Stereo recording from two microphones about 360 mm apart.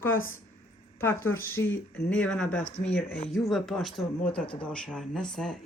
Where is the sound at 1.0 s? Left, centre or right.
Centre.